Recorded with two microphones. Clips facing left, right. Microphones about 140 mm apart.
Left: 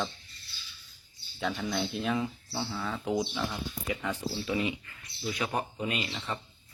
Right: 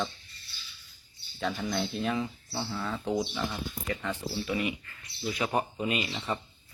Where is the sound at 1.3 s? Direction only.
Centre (ahead or behind).